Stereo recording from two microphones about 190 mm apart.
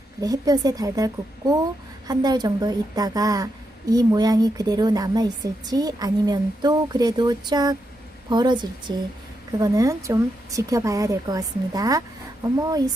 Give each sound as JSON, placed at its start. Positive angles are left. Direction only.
{"t": 0.2, "sound": "a woman's voice", "side_deg": -20}